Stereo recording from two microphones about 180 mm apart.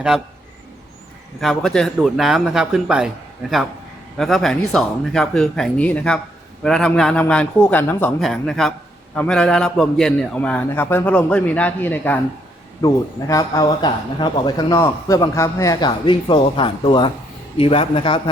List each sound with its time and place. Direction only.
1.4 s a man's voice: centre (ahead or behind); by 18.2 s 30° left (ahead or behind)